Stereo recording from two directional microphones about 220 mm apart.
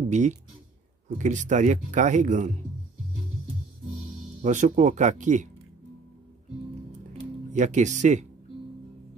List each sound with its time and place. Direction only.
0.1 s speech: 30° right (ahead or behind)
4.4 s speech: 35° right (ahead or behind)
7.5 s speech: 35° right (ahead or behind)